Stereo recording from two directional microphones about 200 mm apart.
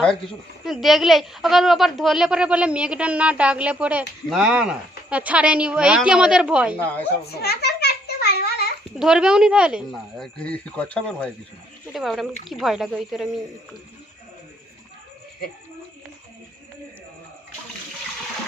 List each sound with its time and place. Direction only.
0.6 s a woman's voice: centre (ahead or behind)
7.3 s children playing: 50° left (ahead or behind)
9.0 s a woman's voice: 5° right (ahead or behind)